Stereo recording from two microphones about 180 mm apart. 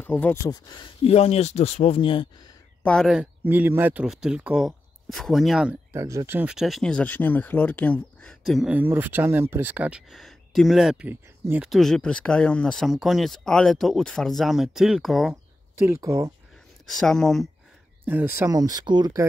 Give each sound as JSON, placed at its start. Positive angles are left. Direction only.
{"t": 0.0, "sound": "speech", "side_deg": 10}
{"t": 2.8, "sound": "speech", "side_deg": 5}
{"t": 5.9, "sound": "speech", "side_deg": -15}
{"t": 15.8, "sound": "speech", "side_deg": -15}
{"t": 16.9, "sound": "speech", "side_deg": 5}
{"t": 18.0, "sound": "speech", "side_deg": -10}